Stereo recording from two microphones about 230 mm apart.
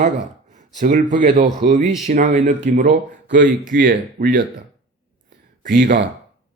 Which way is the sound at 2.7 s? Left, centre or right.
Right.